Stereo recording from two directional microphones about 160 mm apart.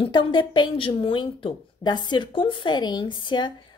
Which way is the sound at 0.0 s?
30° left (ahead or behind).